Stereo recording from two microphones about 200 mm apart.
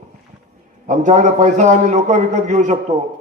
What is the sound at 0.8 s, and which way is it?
A man's voice, 40° right (ahead or behind).